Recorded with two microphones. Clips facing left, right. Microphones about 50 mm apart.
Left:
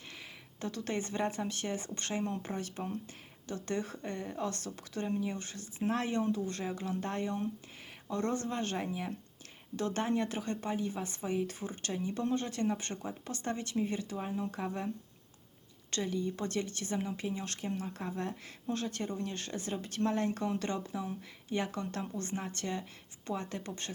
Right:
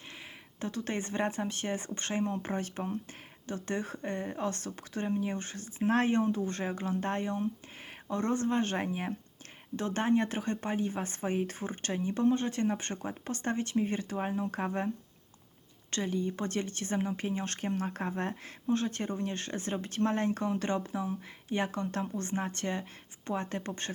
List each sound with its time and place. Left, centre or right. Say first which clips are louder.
0.6 s speech: right 1 dB; right
9.7 s speech: right 4 dB; right
15.9 s speech: right 2 dB; right